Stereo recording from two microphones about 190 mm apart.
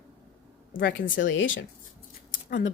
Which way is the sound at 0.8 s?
75° left (ahead or behind).